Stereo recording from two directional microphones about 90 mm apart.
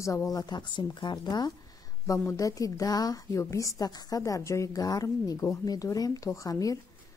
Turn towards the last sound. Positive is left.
turn(degrees=40)  # may be behind; listen again after turning